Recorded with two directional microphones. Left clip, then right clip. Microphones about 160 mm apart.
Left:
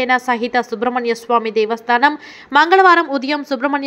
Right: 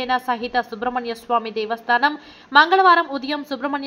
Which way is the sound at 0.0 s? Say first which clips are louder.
Left 6 dB; 35° left (ahead or behind).